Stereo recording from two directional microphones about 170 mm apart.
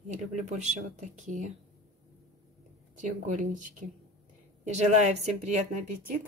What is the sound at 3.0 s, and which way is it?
A woman's voice, 50° right (ahead or behind).